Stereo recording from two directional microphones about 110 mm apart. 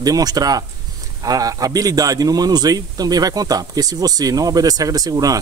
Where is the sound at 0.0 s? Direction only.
35° right (ahead or behind).